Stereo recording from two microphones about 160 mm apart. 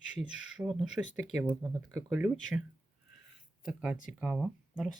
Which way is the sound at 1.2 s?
20° right (ahead or behind).